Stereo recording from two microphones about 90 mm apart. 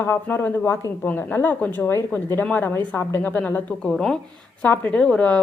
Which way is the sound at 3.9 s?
5° left (ahead or behind).